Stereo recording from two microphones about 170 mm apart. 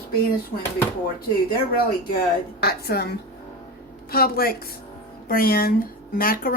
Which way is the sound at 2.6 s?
65° left (ahead or behind).